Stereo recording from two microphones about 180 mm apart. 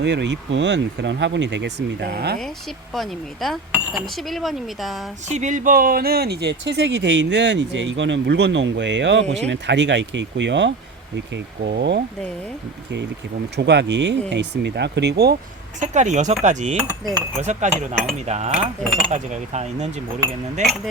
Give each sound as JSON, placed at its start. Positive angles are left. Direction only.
{"t": 0.0, "sound": "speech", "side_deg": -75}
{"t": 2.9, "sound": "speech", "side_deg": 0}
{"t": 5.3, "sound": "speech", "side_deg": -40}
{"t": 9.3, "sound": "speech", "side_deg": -80}
{"t": 11.3, "sound": "speech", "side_deg": -60}
{"t": 13.6, "sound": "speech", "side_deg": -70}
{"t": 15.8, "sound": "cutlery", "side_deg": -40}